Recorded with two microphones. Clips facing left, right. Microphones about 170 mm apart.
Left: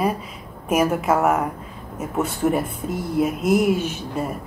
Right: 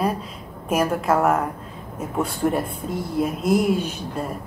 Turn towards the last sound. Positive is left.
turn(degrees=5)  # may be behind; listen again after turning